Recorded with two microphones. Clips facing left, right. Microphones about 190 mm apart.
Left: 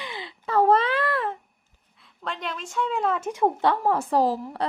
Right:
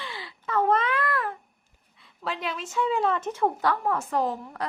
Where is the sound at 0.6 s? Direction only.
35° left (ahead or behind).